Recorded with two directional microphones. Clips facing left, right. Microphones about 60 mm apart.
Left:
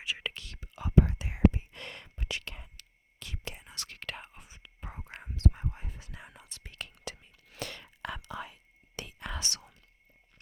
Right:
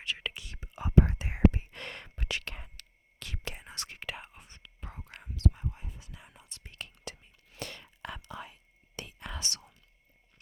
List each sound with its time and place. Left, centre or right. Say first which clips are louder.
0.0 s whispering: even; centre
0.3 s whispering: right 2 dB; centre
0.9 s whispering: even; right
1.5 s whispering: right 2 dB; right
3.8 s whispering: right 1 dB; centre
4.1 s whispering: even; centre; by 5.3 s left
5.5 s whispering: even; left